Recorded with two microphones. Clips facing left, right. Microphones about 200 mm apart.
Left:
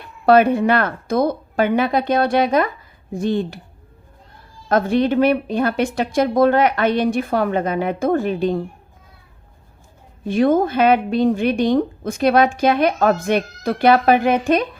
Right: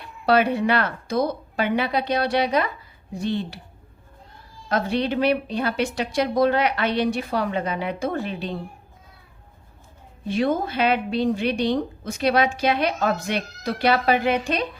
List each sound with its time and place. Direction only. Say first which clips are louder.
0.3 s a woman's voice: left 6 dB; 50° left (ahead or behind)
4.7 s a woman's voice: left 6 dB; 50° left (ahead or behind)
10.2 s a woman's voice: left 7 dB; 50° left (ahead or behind)